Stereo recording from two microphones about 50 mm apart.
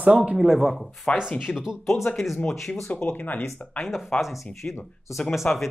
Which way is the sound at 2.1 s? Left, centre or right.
Centre.